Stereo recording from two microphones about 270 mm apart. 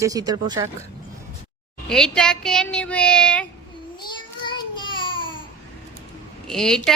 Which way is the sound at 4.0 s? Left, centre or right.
Centre.